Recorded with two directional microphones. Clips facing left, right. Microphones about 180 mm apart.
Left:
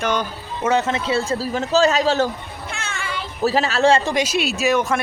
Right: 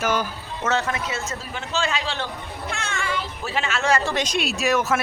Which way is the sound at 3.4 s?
40° left (ahead or behind).